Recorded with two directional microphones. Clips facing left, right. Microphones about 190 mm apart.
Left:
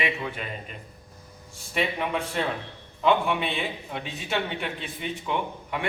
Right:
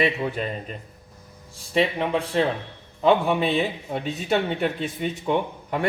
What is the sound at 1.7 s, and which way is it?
A man's voice, 30° right (ahead or behind).